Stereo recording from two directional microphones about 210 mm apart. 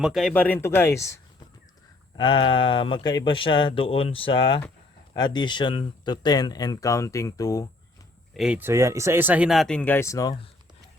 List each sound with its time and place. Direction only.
0.0 s speech: centre (ahead or behind)
2.1 s speech: 25° left (ahead or behind)
8.3 s speech: 5° right (ahead or behind); by 10.3 s 15° left (ahead or behind)